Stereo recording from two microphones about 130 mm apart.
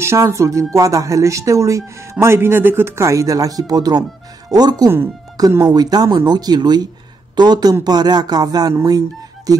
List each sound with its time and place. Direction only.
0.0 s speech: 20° right (ahead or behind)